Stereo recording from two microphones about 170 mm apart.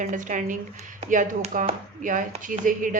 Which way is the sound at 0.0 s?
50° right (ahead or behind).